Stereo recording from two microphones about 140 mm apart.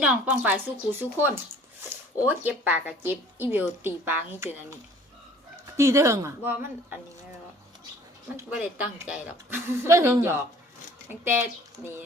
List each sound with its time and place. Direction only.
0.0 s speech: 10° right (ahead or behind)
5.7 s speech: 20° right (ahead or behind)
8.5 s speech: 10° right (ahead or behind)